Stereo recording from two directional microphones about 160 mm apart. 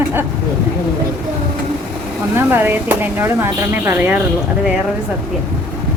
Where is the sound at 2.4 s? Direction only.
15° right (ahead or behind).